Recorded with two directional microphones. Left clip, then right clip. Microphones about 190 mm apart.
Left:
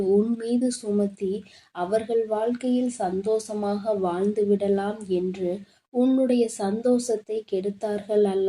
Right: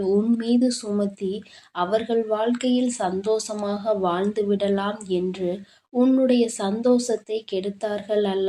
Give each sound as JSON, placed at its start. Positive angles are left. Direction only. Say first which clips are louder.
{"t": 0.0, "sound": "speech", "louder": "even", "side_deg": -15}